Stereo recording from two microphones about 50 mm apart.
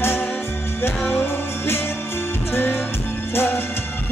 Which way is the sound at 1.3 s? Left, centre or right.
Left.